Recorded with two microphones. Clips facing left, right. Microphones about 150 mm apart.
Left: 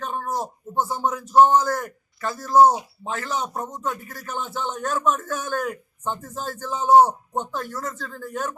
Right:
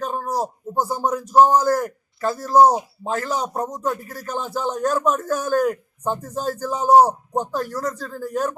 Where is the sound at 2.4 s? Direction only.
35° right (ahead or behind).